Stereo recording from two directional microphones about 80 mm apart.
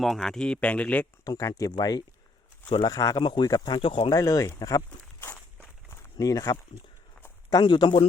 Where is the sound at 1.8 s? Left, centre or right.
Left.